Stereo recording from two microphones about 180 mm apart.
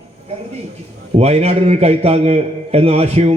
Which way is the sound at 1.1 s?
35° right (ahead or behind).